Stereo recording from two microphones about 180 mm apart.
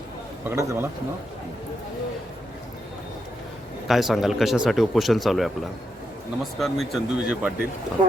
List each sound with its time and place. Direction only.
0.4 s a man's voice: 15° right (ahead or behind)
3.8 s speech: centre (ahead or behind)